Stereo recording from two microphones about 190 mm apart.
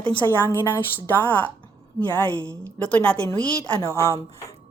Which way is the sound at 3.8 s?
15° left (ahead or behind).